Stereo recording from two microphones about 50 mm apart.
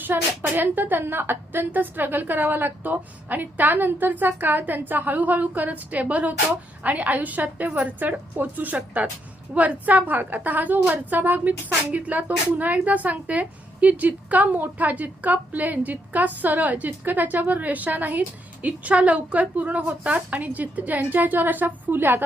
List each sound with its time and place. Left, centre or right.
0.0 s a woman's voice: right